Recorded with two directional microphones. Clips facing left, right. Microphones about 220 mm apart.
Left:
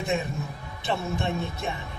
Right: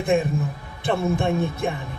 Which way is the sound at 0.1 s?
55° right (ahead or behind).